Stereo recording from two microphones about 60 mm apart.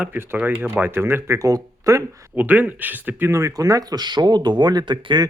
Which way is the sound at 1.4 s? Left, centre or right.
Right.